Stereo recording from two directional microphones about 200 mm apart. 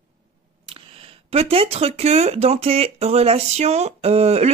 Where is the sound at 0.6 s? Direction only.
25° right (ahead or behind).